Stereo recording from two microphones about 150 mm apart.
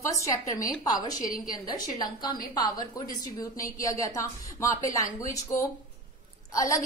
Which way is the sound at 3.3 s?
20° left (ahead or behind).